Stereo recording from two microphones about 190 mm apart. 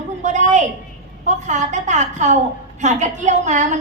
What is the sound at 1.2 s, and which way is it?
A woman's voice, 40° right (ahead or behind).